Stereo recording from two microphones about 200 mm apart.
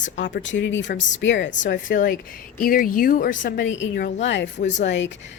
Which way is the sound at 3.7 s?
65° left (ahead or behind).